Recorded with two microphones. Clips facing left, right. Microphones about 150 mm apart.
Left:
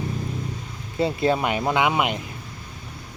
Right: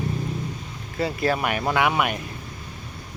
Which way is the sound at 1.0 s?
25° left (ahead or behind).